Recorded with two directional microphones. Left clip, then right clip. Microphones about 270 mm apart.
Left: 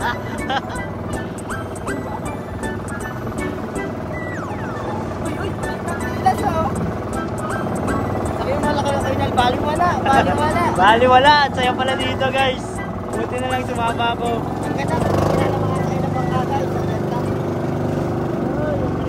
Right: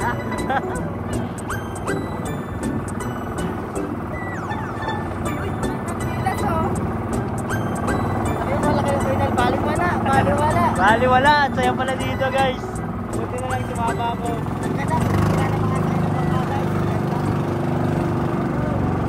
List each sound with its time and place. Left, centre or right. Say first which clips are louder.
0.0 s music: left 1 dB; centre
8.7 s vehicle: left 1 dB; centre
10.4 s a sound: even; left
10.8 s speech: left 5 dB; centre